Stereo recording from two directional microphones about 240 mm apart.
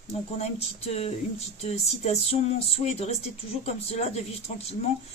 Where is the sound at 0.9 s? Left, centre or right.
Left.